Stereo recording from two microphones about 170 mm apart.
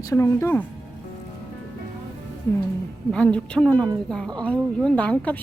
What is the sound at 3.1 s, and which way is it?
A woman's voice, 5° left (ahead or behind).